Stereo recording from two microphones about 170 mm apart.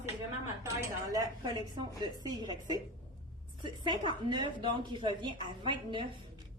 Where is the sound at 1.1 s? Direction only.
25° right (ahead or behind).